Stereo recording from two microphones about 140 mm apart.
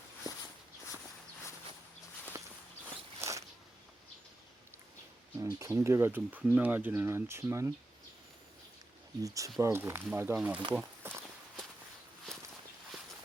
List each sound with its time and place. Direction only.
2.3 s walk: 20° right (ahead or behind)
5.4 s speech: 20° right (ahead or behind)
9.2 s speech: 25° right (ahead or behind)
10.8 s walk: 10° right (ahead or behind)